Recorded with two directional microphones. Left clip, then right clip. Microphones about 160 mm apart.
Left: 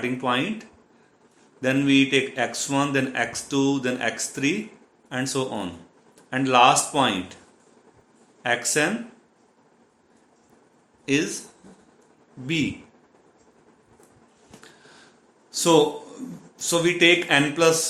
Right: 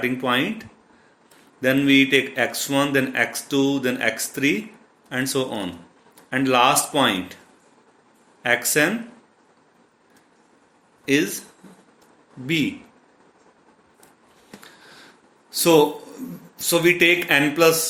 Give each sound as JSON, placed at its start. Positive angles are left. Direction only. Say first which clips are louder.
{"t": 0.0, "sound": "speech", "louder": "right 3 dB", "side_deg": -30}
{"t": 8.4, "sound": "speech", "louder": "right 3 dB", "side_deg": -30}
{"t": 11.0, "sound": "speech", "louder": "right 3 dB", "side_deg": -30}
{"t": 12.5, "sound": "speech", "louder": "right 3 dB", "side_deg": -30}
{"t": 14.6, "sound": "a sound", "louder": "right 2 dB", "side_deg": -30}
{"t": 15.4, "sound": "speech", "louder": "right 2 dB", "side_deg": -30}